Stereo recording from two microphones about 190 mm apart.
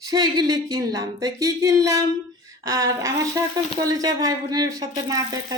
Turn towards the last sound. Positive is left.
turn(degrees=-20)  # may be behind; listen again after turning